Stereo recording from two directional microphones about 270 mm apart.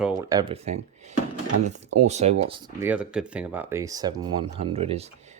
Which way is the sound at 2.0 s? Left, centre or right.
Right.